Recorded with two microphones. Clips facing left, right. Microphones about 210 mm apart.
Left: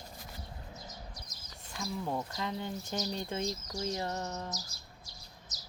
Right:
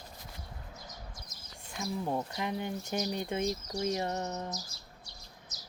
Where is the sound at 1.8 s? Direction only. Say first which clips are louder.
Right 2 dB; 20° right (ahead or behind).